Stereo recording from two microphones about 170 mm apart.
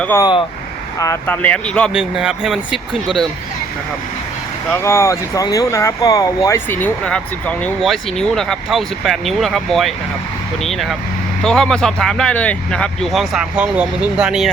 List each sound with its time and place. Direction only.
0.2 s speech: 25° left (ahead or behind); by 3.2 s centre (ahead or behind)
4.7 s speech: 15° left (ahead or behind); by 14.5 s 5° right (ahead or behind)